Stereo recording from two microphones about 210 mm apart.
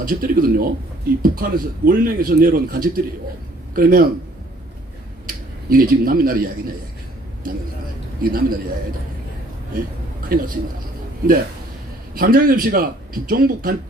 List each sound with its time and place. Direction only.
0.0 s a man's voice: 45° right (ahead or behind)
5.2 s a man's voice: 45° right (ahead or behind)
8.2 s a man's voice: 45° right (ahead or behind)
10.2 s a man's voice: 45° right (ahead or behind)